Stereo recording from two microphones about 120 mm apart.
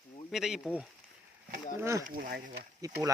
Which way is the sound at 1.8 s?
25° right (ahead or behind).